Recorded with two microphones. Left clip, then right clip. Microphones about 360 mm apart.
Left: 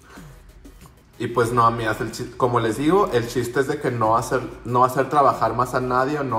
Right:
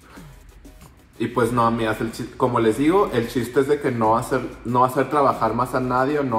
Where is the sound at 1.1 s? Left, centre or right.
Centre.